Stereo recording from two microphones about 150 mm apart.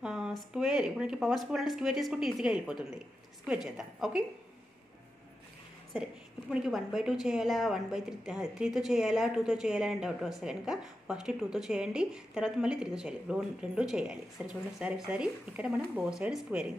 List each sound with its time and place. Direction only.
0.0 s a woman's voice: 5° right (ahead or behind)
6.5 s a woman's voice: 5° right (ahead or behind)